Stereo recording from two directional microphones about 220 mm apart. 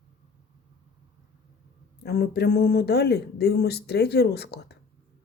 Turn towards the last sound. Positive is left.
turn(degrees=50)  # may be behind; listen again after turning